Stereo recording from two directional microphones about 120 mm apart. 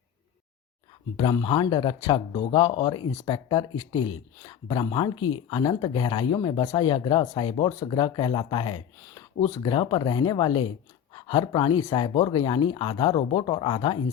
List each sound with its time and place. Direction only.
1.1 s speech: 45° left (ahead or behind)